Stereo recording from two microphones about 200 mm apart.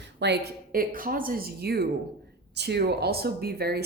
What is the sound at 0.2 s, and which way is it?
Speech, 55° right (ahead or behind).